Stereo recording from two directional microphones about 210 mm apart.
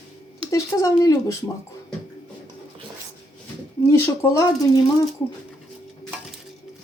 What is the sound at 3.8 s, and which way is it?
Speech, 10° left (ahead or behind).